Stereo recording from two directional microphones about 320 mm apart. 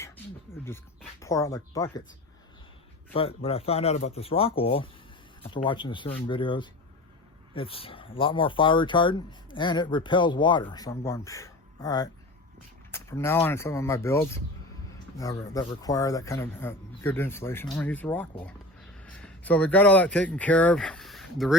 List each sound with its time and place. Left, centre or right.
0.5 s dog: centre
1.2 s speech: centre
3.1 s speech: centre